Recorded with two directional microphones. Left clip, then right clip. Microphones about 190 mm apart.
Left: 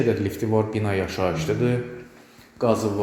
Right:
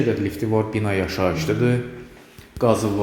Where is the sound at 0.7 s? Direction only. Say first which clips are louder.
Right 2 dB; 5° right (ahead or behind).